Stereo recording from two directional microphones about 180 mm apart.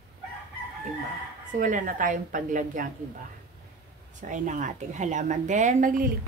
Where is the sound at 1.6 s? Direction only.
45° right (ahead or behind).